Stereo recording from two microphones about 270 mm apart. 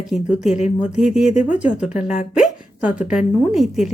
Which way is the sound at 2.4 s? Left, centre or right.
Centre.